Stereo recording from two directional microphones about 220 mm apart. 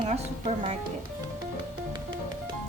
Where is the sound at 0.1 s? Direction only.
30° right (ahead or behind).